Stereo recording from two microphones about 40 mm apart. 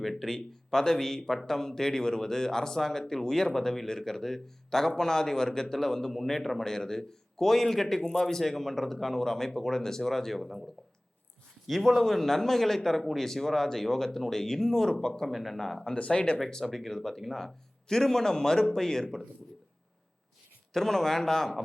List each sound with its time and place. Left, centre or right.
0.0 s speech: centre
11.7 s speech: centre
15.3 s speech: centre
16.0 s speech: left
16.4 s speech: centre
20.7 s speech: centre